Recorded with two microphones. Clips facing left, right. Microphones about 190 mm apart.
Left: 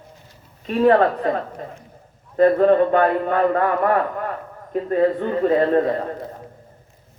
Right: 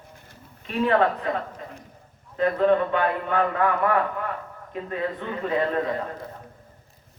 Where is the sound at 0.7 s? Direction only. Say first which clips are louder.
Left 6 dB; 40° left (ahead or behind).